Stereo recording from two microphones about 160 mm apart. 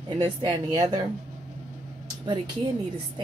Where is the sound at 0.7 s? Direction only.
25° right (ahead or behind).